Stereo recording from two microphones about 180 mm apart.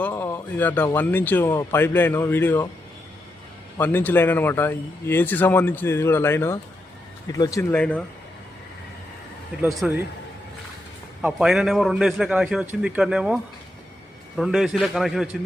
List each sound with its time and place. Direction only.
0.0 s a man's voice: 15° left (ahead or behind)
3.8 s a man's voice: 10° left (ahead or behind)
7.7 s a man's voice: 10° left (ahead or behind)
9.7 s a man's voice: 5° right (ahead or behind)
11.2 s a man's voice: 5° right (ahead or behind)